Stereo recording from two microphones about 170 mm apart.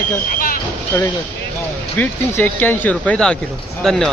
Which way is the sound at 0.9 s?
15° left (ahead or behind).